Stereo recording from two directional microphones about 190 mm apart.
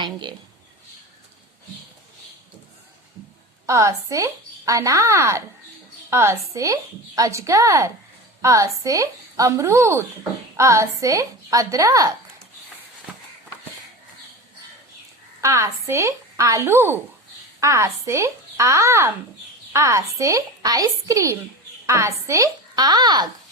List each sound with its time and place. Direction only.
0.0 s speech: 25° right (ahead or behind)
3.7 s speech: 15° right (ahead or behind)
15.4 s speech: 15° right (ahead or behind)